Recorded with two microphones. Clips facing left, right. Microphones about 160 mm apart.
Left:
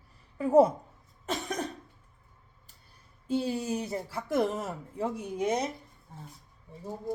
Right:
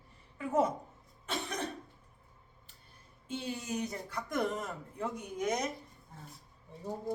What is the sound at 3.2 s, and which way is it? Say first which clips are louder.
Speech: left 9 dB; 35° left (ahead or behind).